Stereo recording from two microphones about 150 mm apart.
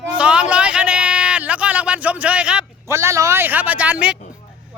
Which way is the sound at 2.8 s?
20° right (ahead or behind).